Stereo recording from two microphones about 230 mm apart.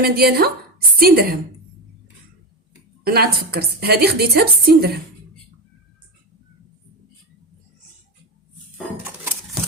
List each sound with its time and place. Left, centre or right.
0.0 s speech: right
3.0 s a woman's voice: right